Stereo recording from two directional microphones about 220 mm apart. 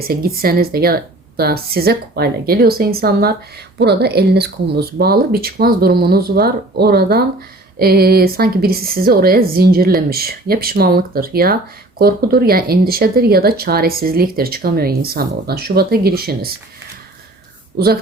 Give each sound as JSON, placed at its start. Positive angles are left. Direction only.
{"t": 0.0, "sound": "speech", "side_deg": -45}